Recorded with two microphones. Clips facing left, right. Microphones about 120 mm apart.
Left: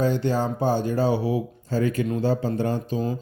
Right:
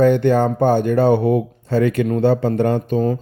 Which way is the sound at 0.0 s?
60° right (ahead or behind).